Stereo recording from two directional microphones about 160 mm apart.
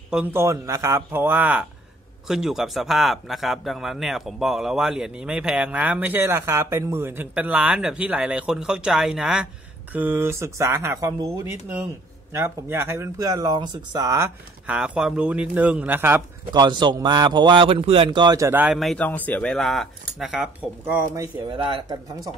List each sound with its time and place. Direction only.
0.1 s a man's voice: 10° right (ahead or behind)
12.3 s speech: 15° right (ahead or behind)
14.7 s a man's voice: 5° right (ahead or behind)
16.5 s speech: 25° right (ahead or behind); by 18.8 s 10° right (ahead or behind)
18.8 s a man's voice: 5° left (ahead or behind)
20.8 s speech: 15° right (ahead or behind)